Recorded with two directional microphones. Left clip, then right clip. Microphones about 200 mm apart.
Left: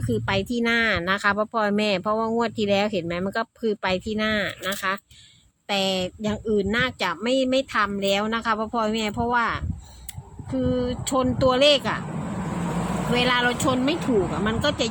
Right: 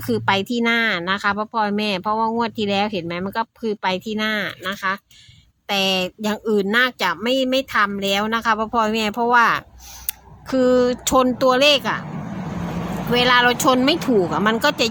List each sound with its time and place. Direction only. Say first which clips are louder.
0.1 s speech: right 5 dB; 20° right (ahead or behind)
13.1 s speech: right 7 dB; 25° right (ahead or behind)